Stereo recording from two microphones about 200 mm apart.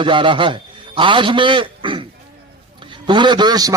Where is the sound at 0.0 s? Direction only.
25° right (ahead or behind).